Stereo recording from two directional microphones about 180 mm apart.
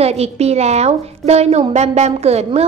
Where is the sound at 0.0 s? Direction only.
35° right (ahead or behind).